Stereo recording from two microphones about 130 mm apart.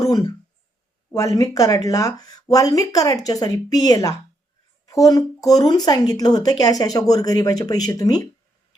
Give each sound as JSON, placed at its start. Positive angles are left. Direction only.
{"t": 0.0, "sound": "speech", "side_deg": 30}